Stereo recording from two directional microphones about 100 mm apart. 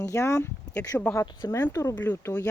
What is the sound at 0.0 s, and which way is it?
Speech, 30° left (ahead or behind).